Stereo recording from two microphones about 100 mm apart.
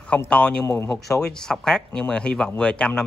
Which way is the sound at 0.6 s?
25° left (ahead or behind).